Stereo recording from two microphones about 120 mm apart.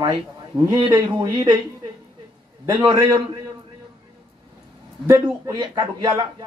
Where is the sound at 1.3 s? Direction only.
40° right (ahead or behind).